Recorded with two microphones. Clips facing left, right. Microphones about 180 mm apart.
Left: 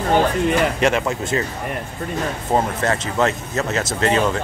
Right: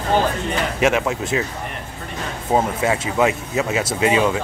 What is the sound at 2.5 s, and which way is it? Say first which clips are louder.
Speech: right 2 dB; 10° right (ahead or behind).